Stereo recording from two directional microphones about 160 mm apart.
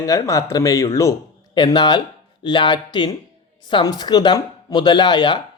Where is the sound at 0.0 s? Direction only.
20° left (ahead or behind).